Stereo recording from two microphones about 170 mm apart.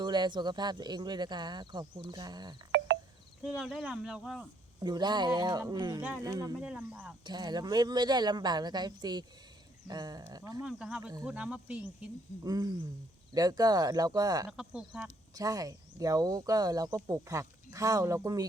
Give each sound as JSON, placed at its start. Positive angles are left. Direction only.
{"t": 0.0, "sound": "speech", "side_deg": -25}
{"t": 2.7, "sound": "music", "side_deg": -90}
{"t": 3.4, "sound": "speech", "side_deg": -5}
{"t": 4.8, "sound": "speech", "side_deg": -25}
{"t": 6.0, "sound": "cricket", "side_deg": -10}
{"t": 6.2, "sound": "speech", "side_deg": -20}
{"t": 6.6, "sound": "cricket", "side_deg": -10}
{"t": 7.3, "sound": "speech", "side_deg": -25}
{"t": 10.6, "sound": "speech", "side_deg": -5}
{"t": 11.3, "sound": "cricket", "side_deg": -5}
{"t": 12.4, "sound": "speech", "side_deg": -20}
{"t": 14.5, "sound": "speech", "side_deg": -5}
{"t": 15.4, "sound": "speech", "side_deg": -20}